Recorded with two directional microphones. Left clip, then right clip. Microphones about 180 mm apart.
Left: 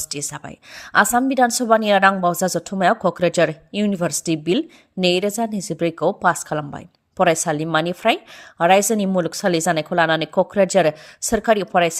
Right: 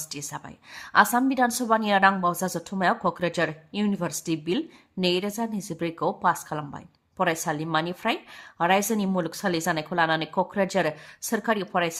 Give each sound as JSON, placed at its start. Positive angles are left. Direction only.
{"t": 0.1, "sound": "a woman's voice", "side_deg": 35}